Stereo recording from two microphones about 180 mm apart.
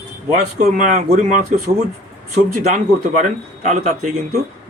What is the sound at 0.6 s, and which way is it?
A man's voice, 40° right (ahead or behind).